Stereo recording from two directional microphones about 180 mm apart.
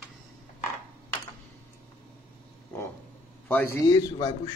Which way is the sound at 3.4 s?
10° left (ahead or behind).